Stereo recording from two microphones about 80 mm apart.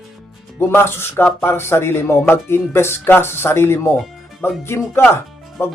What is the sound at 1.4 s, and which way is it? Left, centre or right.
Speech, left.